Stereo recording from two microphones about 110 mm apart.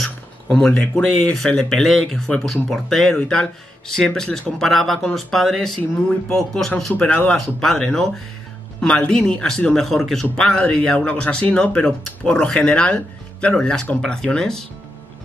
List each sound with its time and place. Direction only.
0.0 s speech: 5° left (ahead or behind)